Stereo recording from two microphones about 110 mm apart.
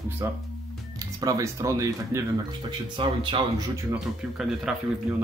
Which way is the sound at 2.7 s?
50° right (ahead or behind).